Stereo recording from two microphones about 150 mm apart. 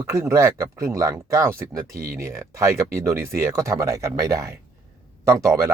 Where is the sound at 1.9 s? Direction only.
75° right (ahead or behind).